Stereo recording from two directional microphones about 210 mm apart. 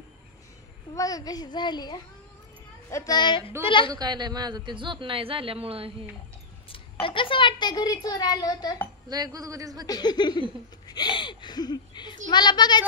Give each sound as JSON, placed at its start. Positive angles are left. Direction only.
{"t": 0.9, "sound": "a child's voice", "side_deg": 20}
{"t": 3.9, "sound": "a man's voice", "side_deg": -20}
{"t": 6.7, "sound": "a child's voice", "side_deg": 25}
{"t": 9.1, "sound": "speech", "side_deg": -15}
{"t": 9.8, "sound": "a child's voice", "side_deg": 20}